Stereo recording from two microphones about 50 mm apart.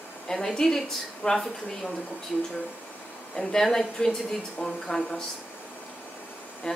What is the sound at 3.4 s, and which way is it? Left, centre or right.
Speech, centre.